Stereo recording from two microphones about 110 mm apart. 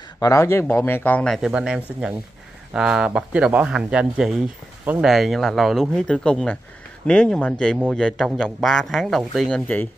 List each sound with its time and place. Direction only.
0.2 s speech: 30° left (ahead or behind)
1.3 s speech: 5° right (ahead or behind)